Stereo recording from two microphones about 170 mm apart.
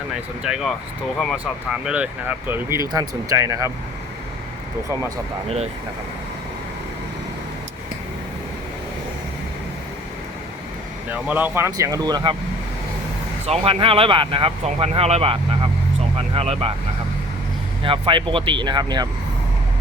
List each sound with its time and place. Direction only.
0.4 s speech: 5° right (ahead or behind)
1.8 s speech: 5° right (ahead or behind)
11.1 s speech: 10° right (ahead or behind); by 12.4 s 25° right (ahead or behind)
13.4 s speech: 35° right (ahead or behind)
17.8 s speech: 30° right (ahead or behind)